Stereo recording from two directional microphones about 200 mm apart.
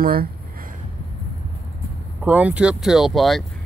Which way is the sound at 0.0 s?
50° right (ahead or behind).